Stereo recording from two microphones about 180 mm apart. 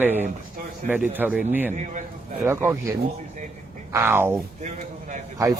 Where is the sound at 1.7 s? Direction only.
45° right (ahead or behind).